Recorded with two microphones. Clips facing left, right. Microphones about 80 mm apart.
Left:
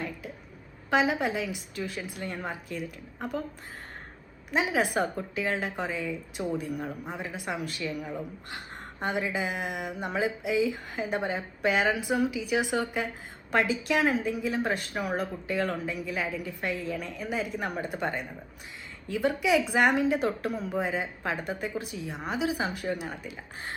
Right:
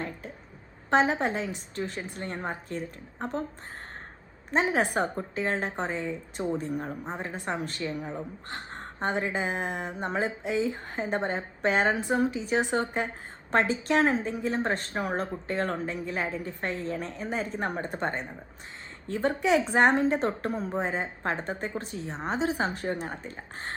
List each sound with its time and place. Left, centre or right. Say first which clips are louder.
0.0 s a sound: even; right
0.9 s a woman's voice: right 2 dB; right
4.5 s a woman's voice: right 1 dB; right